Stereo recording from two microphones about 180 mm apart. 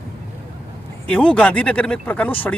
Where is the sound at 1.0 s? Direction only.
5° left (ahead or behind).